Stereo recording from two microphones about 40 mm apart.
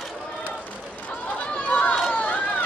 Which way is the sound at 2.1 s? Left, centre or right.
Left.